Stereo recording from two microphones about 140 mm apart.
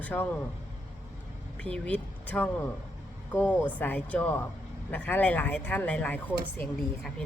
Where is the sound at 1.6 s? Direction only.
10° left (ahead or behind).